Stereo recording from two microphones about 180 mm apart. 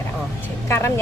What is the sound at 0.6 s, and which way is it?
Speech, 15° left (ahead or behind).